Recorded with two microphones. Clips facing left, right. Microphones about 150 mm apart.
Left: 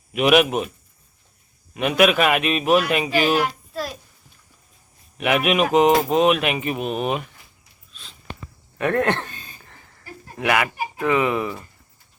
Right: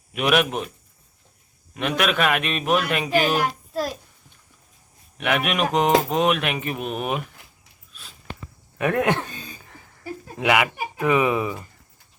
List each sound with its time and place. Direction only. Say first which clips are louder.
0.1 s speech: left 4 dB; 5° left (ahead or behind)
1.7 s speech: left 5 dB; 5° left (ahead or behind)
3.3 s a sound: left 1 dB; 45° right (ahead or behind)
5.1 s speech: left 4 dB; 5° left (ahead or behind)
8.8 s speech: left 1 dB; 10° right (ahead or behind)
9.6 s a sound: right 2 dB; 10° right (ahead or behind)
10.3 s speech: even; 15° right (ahead or behind)